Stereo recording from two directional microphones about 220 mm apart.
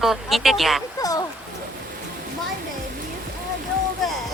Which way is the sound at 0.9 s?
15° left (ahead or behind).